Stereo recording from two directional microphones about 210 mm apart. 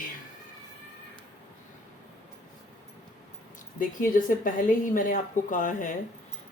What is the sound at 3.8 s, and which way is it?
A woman's voice, 40° left (ahead or behind).